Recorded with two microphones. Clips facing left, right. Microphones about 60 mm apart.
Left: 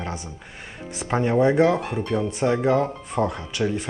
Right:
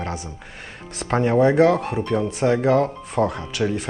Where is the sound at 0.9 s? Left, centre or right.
Centre.